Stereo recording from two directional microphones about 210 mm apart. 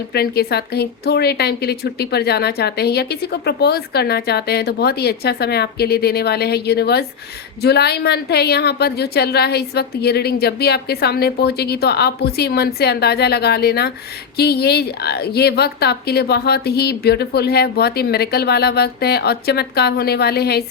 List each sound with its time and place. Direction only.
0.1 s a woman's voice: 50° left (ahead or behind)